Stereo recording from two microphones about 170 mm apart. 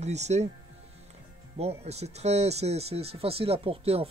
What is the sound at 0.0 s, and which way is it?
Speech, 40° right (ahead or behind).